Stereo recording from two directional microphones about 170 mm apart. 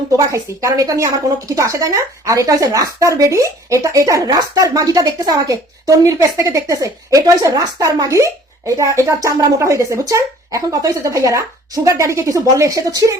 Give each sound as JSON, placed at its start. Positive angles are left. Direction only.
{"t": 0.3, "sound": "speech", "side_deg": -20}